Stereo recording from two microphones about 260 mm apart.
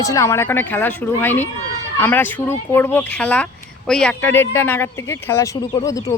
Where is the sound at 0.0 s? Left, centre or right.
Centre.